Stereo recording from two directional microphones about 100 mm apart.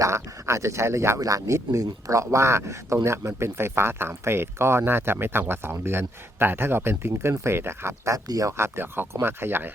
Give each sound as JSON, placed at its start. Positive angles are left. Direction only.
{"t": 0.0, "sound": "speech", "side_deg": -30}